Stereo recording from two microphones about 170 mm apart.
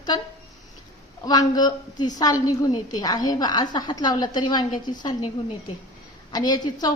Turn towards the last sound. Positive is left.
turn(degrees=25)  # may be behind; listen again after turning